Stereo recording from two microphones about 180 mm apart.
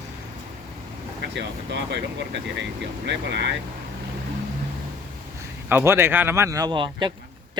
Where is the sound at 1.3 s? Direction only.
70° right (ahead or behind).